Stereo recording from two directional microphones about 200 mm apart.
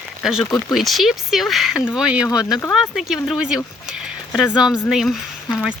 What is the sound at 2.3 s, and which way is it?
Speech, 20° left (ahead or behind).